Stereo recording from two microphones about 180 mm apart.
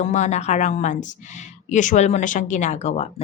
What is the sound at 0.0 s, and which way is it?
A woman's voice, 40° left (ahead or behind).